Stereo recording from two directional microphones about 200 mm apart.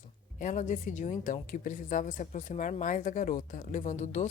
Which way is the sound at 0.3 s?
40° left (ahead or behind).